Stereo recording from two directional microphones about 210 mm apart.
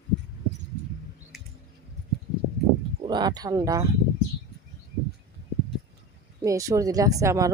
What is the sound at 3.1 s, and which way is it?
Speech, 20° right (ahead or behind).